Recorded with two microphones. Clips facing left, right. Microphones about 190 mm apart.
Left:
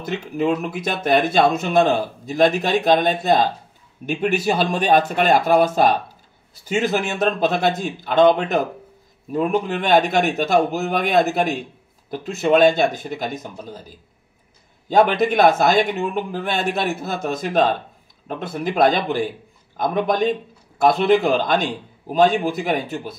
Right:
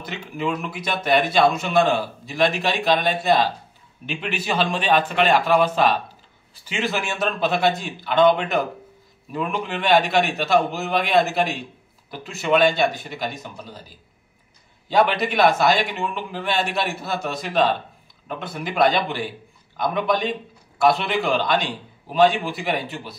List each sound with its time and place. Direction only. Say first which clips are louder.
0.7 s speech: left 2 dB; 50° left (ahead or behind)
14.9 s speech: left 3 dB; 45° left (ahead or behind)